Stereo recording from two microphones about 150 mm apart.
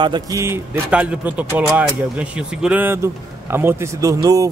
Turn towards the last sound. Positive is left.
turn(degrees=-25)  # may be behind; listen again after turning